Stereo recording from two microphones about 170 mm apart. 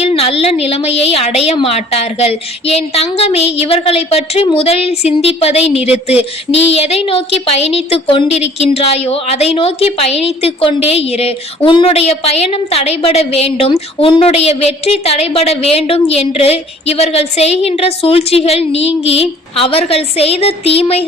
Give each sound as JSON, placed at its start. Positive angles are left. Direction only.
{"t": 0.0, "sound": "a woman's voice", "side_deg": 35}